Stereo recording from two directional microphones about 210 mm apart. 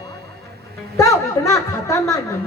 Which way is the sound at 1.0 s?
15° left (ahead or behind).